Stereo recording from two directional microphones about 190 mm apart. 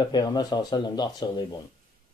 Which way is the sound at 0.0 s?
20° left (ahead or behind).